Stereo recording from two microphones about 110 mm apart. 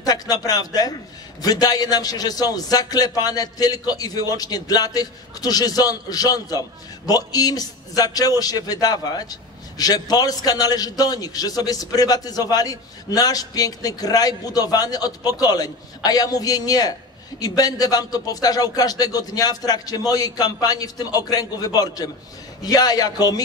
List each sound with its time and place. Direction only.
0.0 s a man's voice: 35° left (ahead or behind)